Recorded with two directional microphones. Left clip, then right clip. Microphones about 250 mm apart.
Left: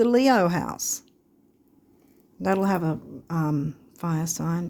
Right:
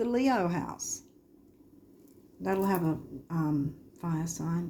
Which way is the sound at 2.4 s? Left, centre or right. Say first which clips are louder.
Left 5 dB; left.